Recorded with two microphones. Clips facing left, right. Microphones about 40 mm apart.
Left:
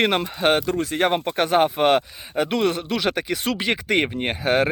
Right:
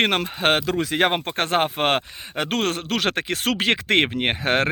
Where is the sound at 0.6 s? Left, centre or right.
Right.